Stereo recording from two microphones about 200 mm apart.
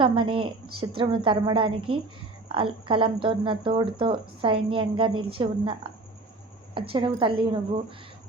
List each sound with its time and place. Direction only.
0.0 s speech: 25° right (ahead or behind)
6.7 s speech: 25° right (ahead or behind)